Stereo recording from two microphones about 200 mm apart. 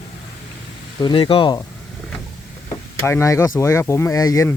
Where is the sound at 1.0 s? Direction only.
25° left (ahead or behind).